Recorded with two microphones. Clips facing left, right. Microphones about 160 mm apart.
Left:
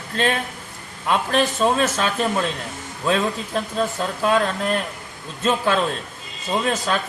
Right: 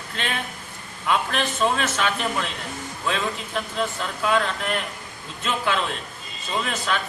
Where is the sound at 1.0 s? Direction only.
40° left (ahead or behind).